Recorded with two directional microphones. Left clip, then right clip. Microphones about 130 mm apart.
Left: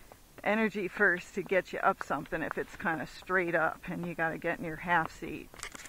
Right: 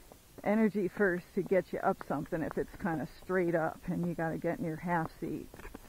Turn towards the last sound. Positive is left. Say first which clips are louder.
# left 5 dB
turn(degrees=25)  # may be behind; listen again after turning